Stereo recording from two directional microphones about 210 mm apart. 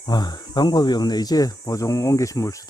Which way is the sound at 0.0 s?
20° left (ahead or behind).